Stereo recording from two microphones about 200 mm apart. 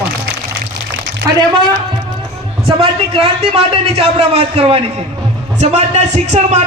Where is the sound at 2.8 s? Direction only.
30° right (ahead or behind).